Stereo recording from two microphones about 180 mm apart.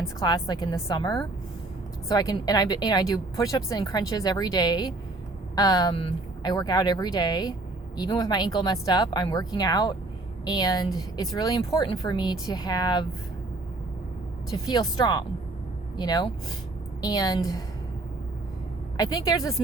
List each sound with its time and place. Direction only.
0.2 s a woman's voice: 20° left (ahead or behind)
14.5 s a woman's voice: 20° left (ahead or behind)
18.9 s a woman's voice: 20° left (ahead or behind)